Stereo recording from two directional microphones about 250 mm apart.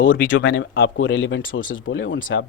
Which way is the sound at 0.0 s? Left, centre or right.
Left.